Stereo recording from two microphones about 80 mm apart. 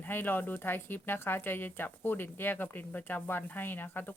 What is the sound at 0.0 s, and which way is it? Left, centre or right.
A woman's voice, left.